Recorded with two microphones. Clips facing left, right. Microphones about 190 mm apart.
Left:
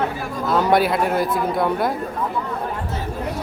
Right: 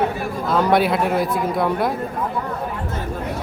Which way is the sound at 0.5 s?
Centre (ahead or behind).